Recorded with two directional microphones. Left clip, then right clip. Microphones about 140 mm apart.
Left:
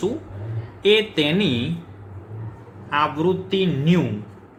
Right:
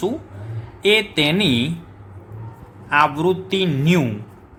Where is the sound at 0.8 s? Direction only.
40° right (ahead or behind).